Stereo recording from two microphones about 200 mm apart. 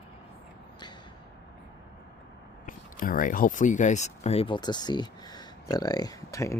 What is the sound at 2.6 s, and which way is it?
Speech, 45° left (ahead or behind).